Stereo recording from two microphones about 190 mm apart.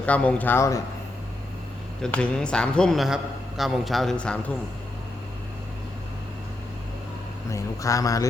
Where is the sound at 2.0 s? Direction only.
5° left (ahead or behind).